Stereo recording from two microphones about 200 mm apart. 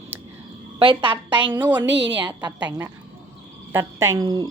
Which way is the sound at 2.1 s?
20° right (ahead or behind).